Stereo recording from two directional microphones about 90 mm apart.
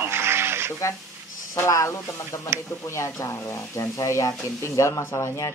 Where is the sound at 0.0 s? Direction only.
30° right (ahead or behind).